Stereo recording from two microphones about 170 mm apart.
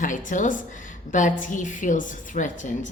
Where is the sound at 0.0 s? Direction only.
50° left (ahead or behind).